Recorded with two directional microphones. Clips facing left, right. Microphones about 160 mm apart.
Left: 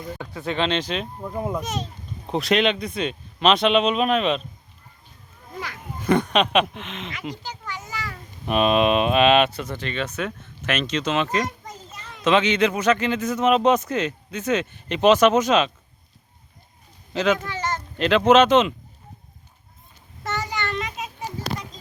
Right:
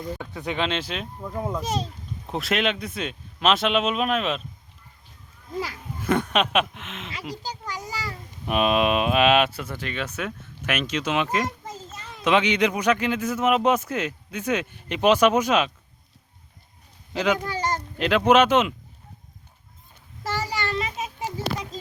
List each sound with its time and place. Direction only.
0.3 s speech: 10° right (ahead or behind)
1.2 s speech: 10° left (ahead or behind)
1.6 s a child's voice: 35° right (ahead or behind)
2.3 s speech: 5° right (ahead or behind)
6.3 s speech: 5° right (ahead or behind)
7.7 s a sound: 35° right (ahead or behind)
8.4 s speech: 5° right (ahead or behind)
17.2 s speech: 15° right (ahead or behind)
17.4 s a sound: 35° right (ahead or behind)
17.9 s speech: 10° right (ahead or behind)
20.2 s child singing: 35° right (ahead or behind)